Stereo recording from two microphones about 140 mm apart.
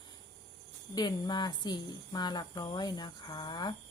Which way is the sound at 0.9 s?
30° left (ahead or behind).